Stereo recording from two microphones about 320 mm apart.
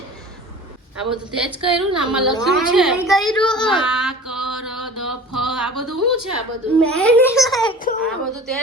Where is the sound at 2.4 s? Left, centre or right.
Centre.